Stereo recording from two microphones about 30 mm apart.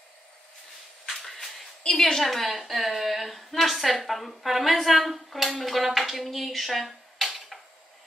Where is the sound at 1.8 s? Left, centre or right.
Left.